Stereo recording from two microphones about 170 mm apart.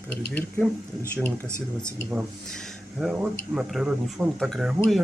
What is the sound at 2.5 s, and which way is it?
Speech, centre (ahead or behind).